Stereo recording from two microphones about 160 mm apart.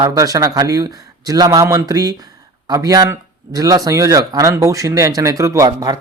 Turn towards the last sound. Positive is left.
turn(degrees=-25)  # may be behind; listen again after turning